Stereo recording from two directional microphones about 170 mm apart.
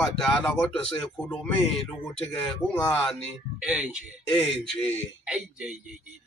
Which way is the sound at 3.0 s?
Centre (ahead or behind).